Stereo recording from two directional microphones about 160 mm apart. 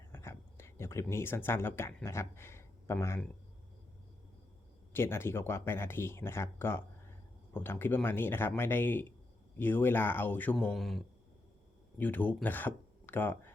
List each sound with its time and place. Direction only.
0.1 s speech: 15° left (ahead or behind)
4.9 s speech: 15° left (ahead or behind)
10.7 s speech: centre (ahead or behind)
11.9 s speech: 10° left (ahead or behind)